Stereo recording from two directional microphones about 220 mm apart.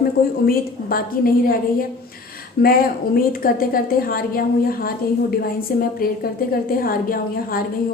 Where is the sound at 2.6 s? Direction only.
40° left (ahead or behind).